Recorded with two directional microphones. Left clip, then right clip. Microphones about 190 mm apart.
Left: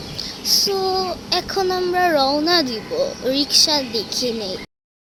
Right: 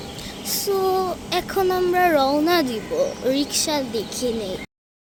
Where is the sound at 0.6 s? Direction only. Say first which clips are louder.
Left 1 dB; 20° right (ahead or behind).